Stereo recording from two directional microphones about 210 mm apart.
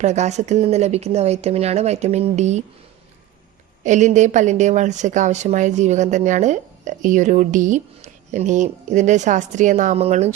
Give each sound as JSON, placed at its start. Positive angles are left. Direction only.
{"t": 0.0, "sound": "a woman's voice", "side_deg": -35}
{"t": 3.8, "sound": "a woman's voice", "side_deg": -35}